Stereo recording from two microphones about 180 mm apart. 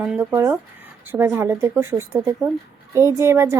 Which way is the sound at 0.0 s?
10° right (ahead or behind).